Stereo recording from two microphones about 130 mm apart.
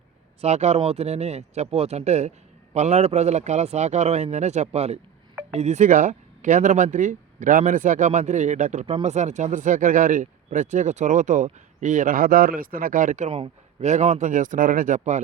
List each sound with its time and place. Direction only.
0.4 s a man's voice: 60° right (ahead or behind)
13.3 s speech: 55° right (ahead or behind); by 15.2 s 70° right (ahead or behind)